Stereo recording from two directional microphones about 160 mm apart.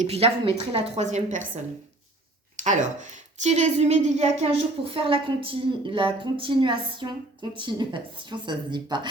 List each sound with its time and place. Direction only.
0.0 s a woman's voice: 40° right (ahead or behind)
2.6 s a woman's voice: 50° right (ahead or behind); by 9.0 s 30° right (ahead or behind)